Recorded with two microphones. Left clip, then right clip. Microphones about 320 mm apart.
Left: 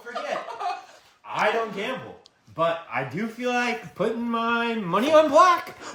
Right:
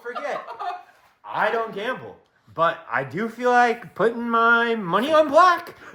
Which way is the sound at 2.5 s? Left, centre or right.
Centre.